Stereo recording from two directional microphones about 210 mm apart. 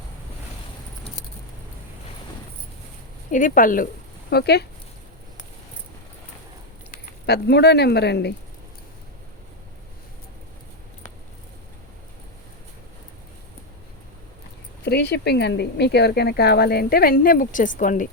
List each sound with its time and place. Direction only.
3.3 s speech: 40° left (ahead or behind)
4.3 s speech: 50° left (ahead or behind)
7.3 s speech: 50° left (ahead or behind)
14.8 s speech: 50° left (ahead or behind)